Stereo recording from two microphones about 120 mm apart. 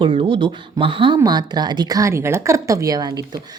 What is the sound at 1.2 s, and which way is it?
Speech, 35° right (ahead or behind).